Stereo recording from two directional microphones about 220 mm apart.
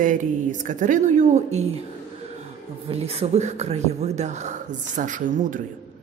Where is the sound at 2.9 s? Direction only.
30° right (ahead or behind).